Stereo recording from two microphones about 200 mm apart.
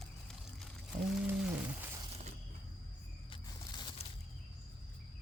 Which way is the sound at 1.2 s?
10° right (ahead or behind).